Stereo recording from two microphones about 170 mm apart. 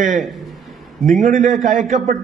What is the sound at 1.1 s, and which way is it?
A man's voice, 55° right (ahead or behind).